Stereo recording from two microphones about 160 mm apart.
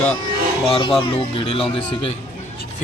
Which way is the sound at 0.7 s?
35° left (ahead or behind).